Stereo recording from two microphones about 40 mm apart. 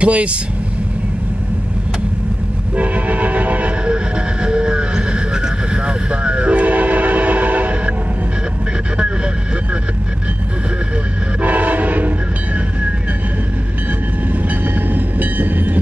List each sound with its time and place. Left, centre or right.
0.0 s speech: right
2.8 s train: right
3.8 s train: right
6.6 s train: right
11.4 s train: right
14.9 s train: right